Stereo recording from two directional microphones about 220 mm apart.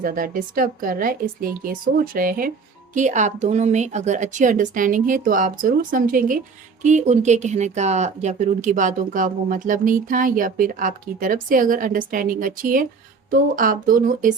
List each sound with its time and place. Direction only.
0.0 s speech: 40° right (ahead or behind)